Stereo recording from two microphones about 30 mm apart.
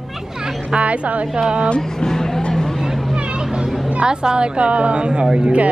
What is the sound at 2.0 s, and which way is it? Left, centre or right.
Music, centre.